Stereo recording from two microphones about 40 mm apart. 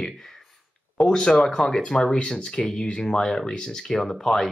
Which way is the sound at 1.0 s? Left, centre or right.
Centre.